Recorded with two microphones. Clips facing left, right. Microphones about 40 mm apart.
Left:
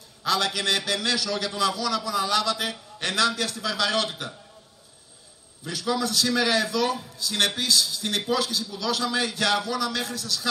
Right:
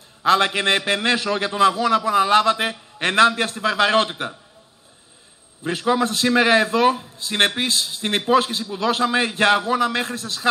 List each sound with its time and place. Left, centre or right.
0.2 s a man's voice: right
5.6 s a man's voice: right